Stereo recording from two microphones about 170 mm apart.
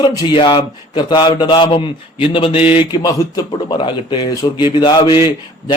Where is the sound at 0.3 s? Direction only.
30° left (ahead or behind).